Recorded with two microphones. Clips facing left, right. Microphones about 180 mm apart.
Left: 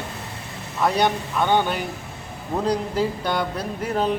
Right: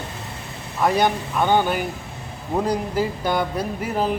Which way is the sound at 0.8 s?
5° right (ahead or behind).